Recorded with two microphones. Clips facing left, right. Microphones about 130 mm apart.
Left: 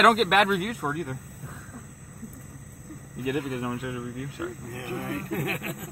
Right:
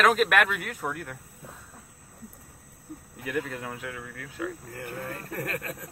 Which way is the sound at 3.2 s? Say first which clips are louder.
Left 4 dB; 15° left (ahead or behind).